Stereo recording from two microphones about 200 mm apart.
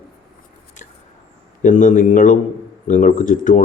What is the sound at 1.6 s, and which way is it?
A man's voice, 40° left (ahead or behind).